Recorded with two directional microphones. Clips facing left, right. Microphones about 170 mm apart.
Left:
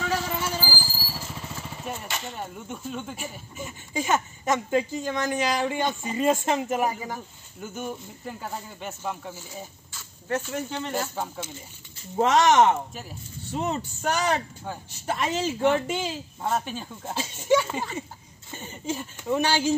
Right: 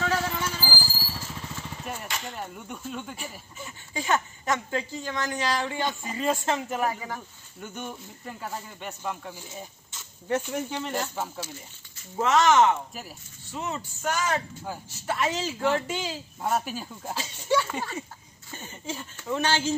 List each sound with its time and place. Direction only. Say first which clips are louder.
0.0 s a sound: even; 10° left (ahead or behind)
1.2 s speech: left 1 dB; 5° left (ahead or behind)
3.5 s a woman's voice: left 5 dB; 20° left (ahead or behind)
7.6 s speech: left 4 dB; 5° left (ahead or behind)
9.9 s speech: right 1 dB; 10° right (ahead or behind)
12.2 s speech: left 2 dB; 35° left (ahead or behind)
15.0 s a woman's voice: left 2 dB; 25° left (ahead or behind)
16.3 s speech: right 1 dB; 5° right (ahead or behind)
17.1 s a woman's voice: left 4 dB; 20° left (ahead or behind)